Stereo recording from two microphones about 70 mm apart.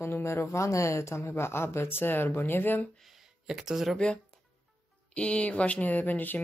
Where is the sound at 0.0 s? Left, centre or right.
Left.